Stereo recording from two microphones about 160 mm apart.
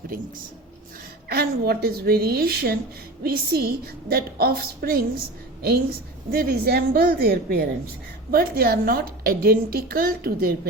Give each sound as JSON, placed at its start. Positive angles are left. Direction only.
{"t": 1.3, "sound": "a woman's voice", "side_deg": -80}
{"t": 6.3, "sound": "a woman's voice", "side_deg": -70}